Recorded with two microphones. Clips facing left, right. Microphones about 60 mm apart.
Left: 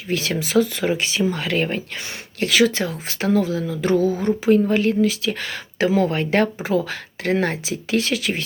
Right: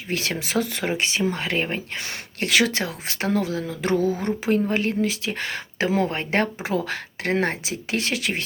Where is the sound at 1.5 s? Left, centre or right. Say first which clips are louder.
Left 3 dB; right.